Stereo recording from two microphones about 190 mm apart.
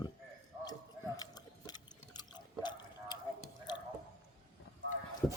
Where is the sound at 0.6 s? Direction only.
20° left (ahead or behind).